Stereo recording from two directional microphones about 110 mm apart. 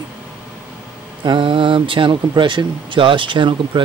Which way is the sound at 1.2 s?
50° right (ahead or behind).